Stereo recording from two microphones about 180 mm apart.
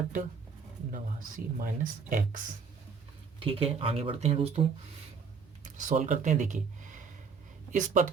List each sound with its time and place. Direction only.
0.9 s speech: 50° right (ahead or behind)
3.4 s speech: 30° right (ahead or behind)
5.6 s speech: 45° right (ahead or behind)